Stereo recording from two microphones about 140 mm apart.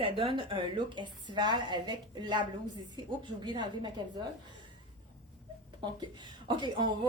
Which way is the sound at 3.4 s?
35° right (ahead or behind).